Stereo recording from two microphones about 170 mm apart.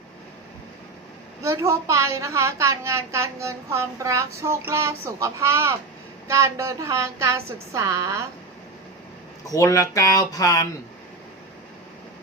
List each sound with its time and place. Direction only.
1.4 s a woman's voice: 15° right (ahead or behind)
9.4 s speech: 20° left (ahead or behind)